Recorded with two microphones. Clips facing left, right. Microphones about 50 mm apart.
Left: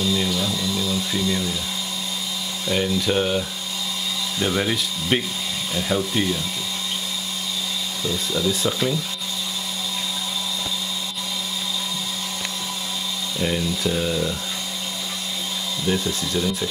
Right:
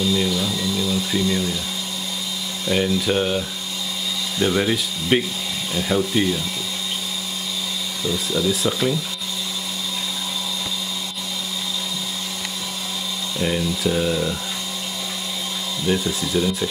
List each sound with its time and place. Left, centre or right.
0.0 s speech: centre
2.7 s speech: centre
8.1 s speech: centre
13.4 s speech: centre
15.9 s speech: centre